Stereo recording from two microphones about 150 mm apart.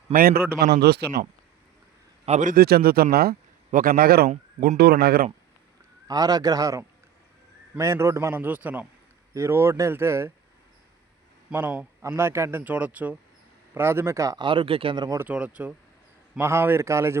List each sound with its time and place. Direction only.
0.1 s a man's voice: 85° right
2.2 s a man's voice: 55° right (ahead or behind); by 4.3 s 85° right
4.3 s speech: 55° right (ahead or behind)
4.8 s speech: 90° right
6.1 s speech: 25° right (ahead or behind)
11.5 s speech: 10° right (ahead or behind); by 15.2 s 30° right (ahead or behind)
15.2 s speech: 10° right (ahead or behind)